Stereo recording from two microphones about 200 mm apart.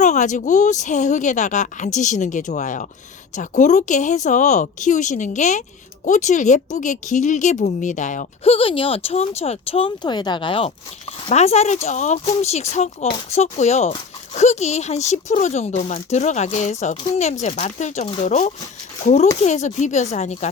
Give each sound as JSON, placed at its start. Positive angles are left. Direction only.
{"t": 0.0, "sound": "a woman's voice", "side_deg": 35}